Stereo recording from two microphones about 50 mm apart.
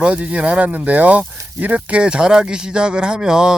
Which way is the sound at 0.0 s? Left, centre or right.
Right.